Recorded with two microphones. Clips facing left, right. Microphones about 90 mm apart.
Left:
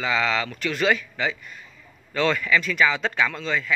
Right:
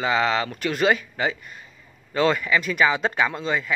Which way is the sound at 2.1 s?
25° right (ahead or behind).